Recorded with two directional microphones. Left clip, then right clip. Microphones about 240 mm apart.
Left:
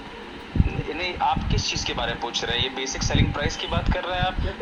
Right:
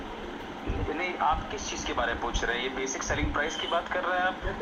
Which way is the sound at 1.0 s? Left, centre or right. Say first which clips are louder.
Left 4 dB; centre.